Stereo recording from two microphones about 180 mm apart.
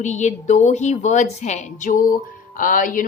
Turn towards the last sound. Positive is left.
turn(degrees=50)  # may be behind; listen again after turning